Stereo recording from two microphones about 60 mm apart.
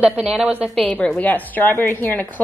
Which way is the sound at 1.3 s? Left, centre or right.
Left.